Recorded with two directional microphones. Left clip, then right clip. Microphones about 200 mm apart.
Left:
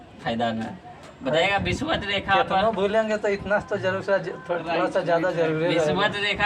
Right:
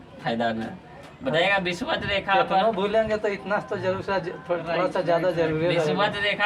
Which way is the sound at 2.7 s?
15° left (ahead or behind).